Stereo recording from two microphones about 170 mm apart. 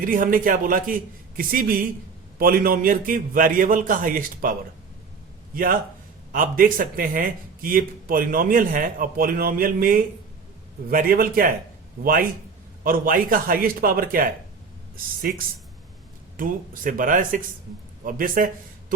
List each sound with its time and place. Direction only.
0.0 s speech: 55° right (ahead or behind)
6.3 s speech: 55° right (ahead or behind)